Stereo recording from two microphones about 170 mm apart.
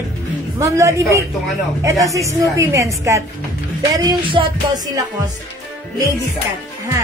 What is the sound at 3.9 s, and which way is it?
Speech, 30° right (ahead or behind).